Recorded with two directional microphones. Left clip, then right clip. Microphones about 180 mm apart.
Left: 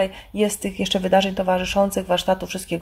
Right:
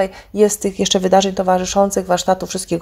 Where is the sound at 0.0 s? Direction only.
35° right (ahead or behind).